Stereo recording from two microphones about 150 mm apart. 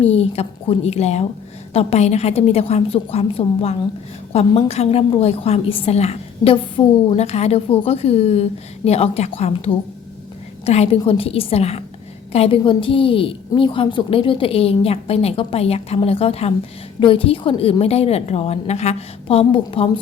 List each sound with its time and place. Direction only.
0.0 s a woman's voice: 40° left (ahead or behind)